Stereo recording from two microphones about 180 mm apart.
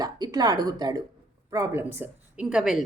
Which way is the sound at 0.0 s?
20° right (ahead or behind).